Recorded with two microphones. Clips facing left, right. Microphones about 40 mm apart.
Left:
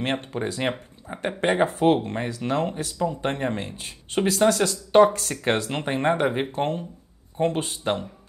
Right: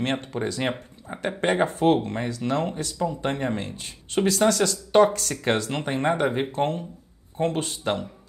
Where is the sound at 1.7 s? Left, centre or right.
Centre.